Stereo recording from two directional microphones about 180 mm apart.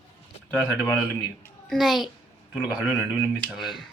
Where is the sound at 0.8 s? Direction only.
10° left (ahead or behind).